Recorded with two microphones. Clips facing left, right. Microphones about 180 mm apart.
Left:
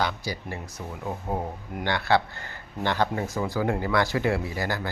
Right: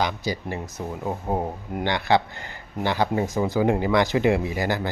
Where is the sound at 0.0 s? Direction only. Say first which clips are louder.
Right 3 dB; 20° right (ahead or behind).